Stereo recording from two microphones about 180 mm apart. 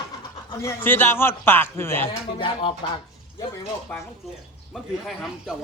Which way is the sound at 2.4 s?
30° left (ahead or behind).